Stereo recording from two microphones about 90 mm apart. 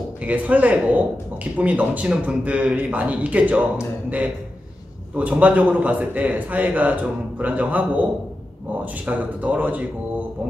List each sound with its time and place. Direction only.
0.2 s speech: 15° right (ahead or behind)
5.1 s speech: 15° right (ahead or behind)